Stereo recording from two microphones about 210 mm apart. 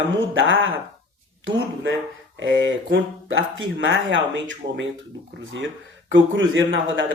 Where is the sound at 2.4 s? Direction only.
65° right (ahead or behind).